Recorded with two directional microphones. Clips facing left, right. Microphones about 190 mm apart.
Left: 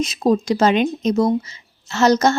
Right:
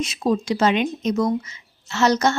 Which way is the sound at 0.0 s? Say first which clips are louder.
Left 4 dB; 40° left (ahead or behind).